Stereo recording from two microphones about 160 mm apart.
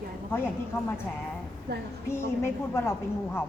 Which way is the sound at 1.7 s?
90° right.